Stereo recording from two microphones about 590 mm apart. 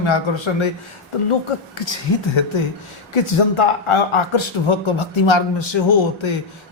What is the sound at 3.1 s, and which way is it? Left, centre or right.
Speech, left.